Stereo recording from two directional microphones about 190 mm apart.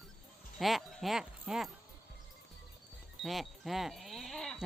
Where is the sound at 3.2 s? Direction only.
Centre (ahead or behind).